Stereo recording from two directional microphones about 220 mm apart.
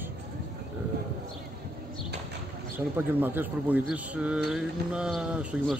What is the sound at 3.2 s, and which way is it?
A man's voice, 10° right (ahead or behind).